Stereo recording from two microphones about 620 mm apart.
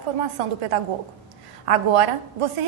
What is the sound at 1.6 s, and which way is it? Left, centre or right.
Speech, right.